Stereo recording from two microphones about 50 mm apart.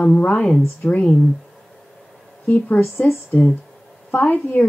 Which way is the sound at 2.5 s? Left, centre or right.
Left.